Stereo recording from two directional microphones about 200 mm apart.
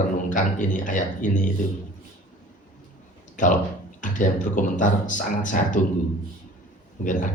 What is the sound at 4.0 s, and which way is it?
Speech, 40° left (ahead or behind).